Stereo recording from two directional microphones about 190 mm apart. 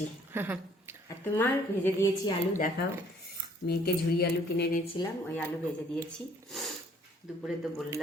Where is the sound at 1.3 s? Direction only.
10° left (ahead or behind).